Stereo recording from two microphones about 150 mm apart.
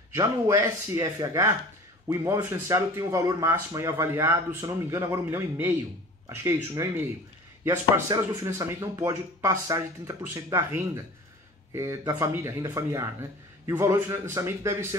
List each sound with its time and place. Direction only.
0.1 s speech: 20° right (ahead or behind)
2.5 s speech: 20° right (ahead or behind)